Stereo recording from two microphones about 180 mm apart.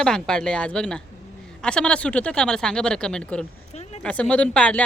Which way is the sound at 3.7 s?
40° left (ahead or behind).